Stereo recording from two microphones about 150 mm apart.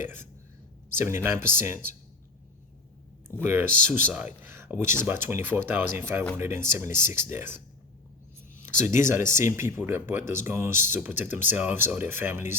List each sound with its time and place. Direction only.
0.0 s speech: 15° right (ahead or behind)
3.4 s speech: 15° right (ahead or behind)
8.6 s speech: 15° right (ahead or behind)